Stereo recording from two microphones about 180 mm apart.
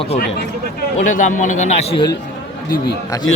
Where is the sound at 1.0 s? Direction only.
45° left (ahead or behind).